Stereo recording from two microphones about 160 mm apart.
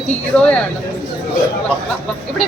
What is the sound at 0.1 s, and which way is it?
Speech, 10° left (ahead or behind).